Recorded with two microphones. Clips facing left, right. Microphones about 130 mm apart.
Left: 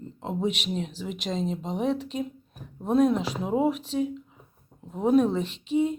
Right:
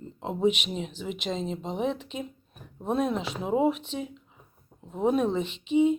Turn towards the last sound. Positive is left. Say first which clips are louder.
# right 2 dB
turn(degrees=0)  # may be behind; listen again after turning